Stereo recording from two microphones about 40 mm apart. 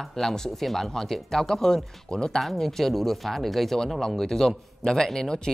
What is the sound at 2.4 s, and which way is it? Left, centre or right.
Speech, centre.